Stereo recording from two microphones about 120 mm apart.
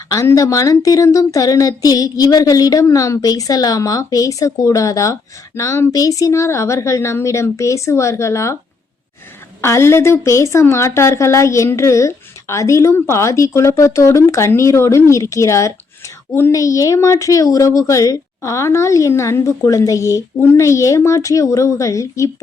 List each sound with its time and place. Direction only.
0.1 s a woman's voice: 25° left (ahead or behind)
9.6 s a woman's voice: 25° left (ahead or behind)